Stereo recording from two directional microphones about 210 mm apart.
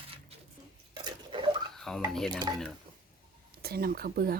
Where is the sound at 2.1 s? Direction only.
Centre (ahead or behind).